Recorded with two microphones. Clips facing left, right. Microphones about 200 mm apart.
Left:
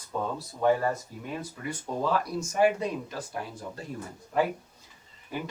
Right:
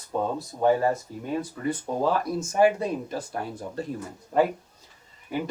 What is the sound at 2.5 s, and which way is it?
Speech, 40° right (ahead or behind).